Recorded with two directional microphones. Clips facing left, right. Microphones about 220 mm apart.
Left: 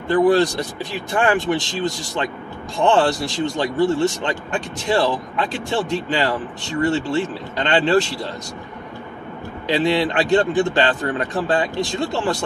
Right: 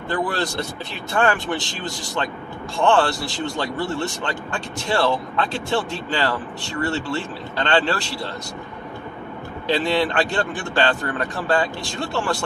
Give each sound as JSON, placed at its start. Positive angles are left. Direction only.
{"t": 0.1, "sound": "speech", "side_deg": 15}
{"t": 9.7, "sound": "speech", "side_deg": 15}